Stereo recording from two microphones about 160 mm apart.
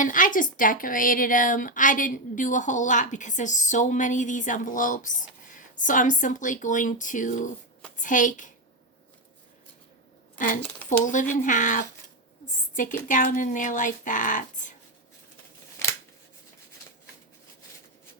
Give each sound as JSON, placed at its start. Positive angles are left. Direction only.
{"t": 0.0, "sound": "a woman's voice", "side_deg": 55}
{"t": 10.3, "sound": "speech", "side_deg": 55}
{"t": 10.6, "sound": "speech", "side_deg": 10}
{"t": 10.8, "sound": "speech", "side_deg": 50}
{"t": 13.1, "sound": "speech", "side_deg": 55}